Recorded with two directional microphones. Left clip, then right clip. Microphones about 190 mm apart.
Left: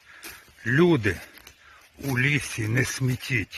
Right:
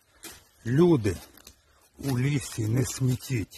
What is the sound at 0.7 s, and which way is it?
Speech, 15° right (ahead or behind).